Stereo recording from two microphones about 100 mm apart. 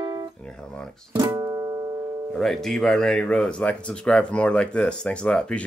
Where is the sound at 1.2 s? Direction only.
30° right (ahead or behind).